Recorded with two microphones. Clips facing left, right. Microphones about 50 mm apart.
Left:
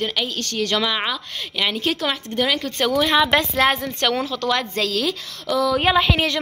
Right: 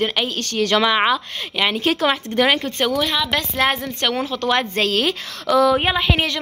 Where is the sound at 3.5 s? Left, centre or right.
Centre.